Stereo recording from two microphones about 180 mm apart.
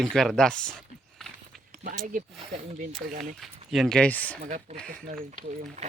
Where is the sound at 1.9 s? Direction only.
45° right (ahead or behind).